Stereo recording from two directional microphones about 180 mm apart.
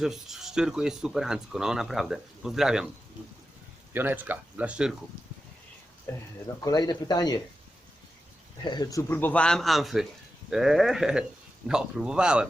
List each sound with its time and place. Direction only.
0.0 s speech: centre (ahead or behind)
3.9 s speech: 10° right (ahead or behind)
6.1 s a man's voice: 15° left (ahead or behind)
8.6 s a man's voice: 25° left (ahead or behind); by 12.5 s 5° right (ahead or behind)